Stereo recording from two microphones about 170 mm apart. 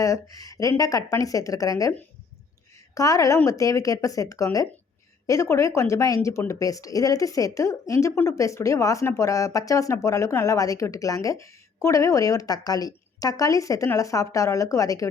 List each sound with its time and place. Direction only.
0.0 s speech: 20° left (ahead or behind)
2.9 s speech: 20° left (ahead or behind)